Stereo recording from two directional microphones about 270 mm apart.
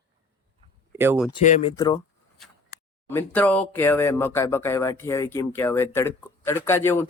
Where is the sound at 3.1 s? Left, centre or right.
Centre.